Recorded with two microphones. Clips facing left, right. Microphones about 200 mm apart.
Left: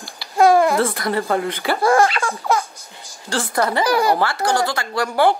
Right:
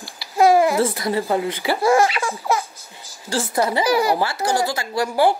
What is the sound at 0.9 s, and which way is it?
Speech, 55° left (ahead or behind).